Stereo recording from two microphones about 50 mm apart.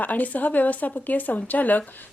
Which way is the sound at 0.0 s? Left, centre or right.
Left.